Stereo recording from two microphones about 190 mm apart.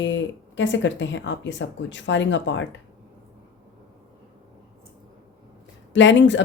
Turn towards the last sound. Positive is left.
turn(degrees=70)  # may be behind; listen again after turning